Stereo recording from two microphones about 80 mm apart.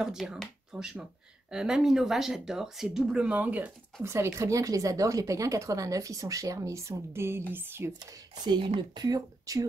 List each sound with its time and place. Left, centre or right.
0.0 s speech: centre
4.0 s speech: right
8.0 s speech: right
9.0 s speech: right